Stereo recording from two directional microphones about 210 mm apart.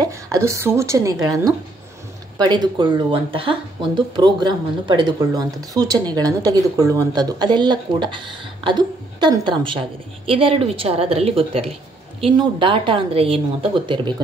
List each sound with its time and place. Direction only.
0.0 s speech: 15° right (ahead or behind)